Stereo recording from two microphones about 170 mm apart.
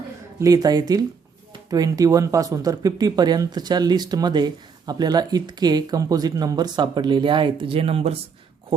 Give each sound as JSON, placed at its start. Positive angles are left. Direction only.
{"t": 0.3, "sound": "speech", "side_deg": -20}